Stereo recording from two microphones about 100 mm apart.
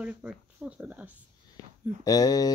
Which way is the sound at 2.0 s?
40° left (ahead or behind).